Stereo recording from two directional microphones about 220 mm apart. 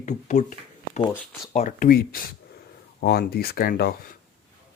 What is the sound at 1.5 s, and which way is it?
Speech, 35° left (ahead or behind).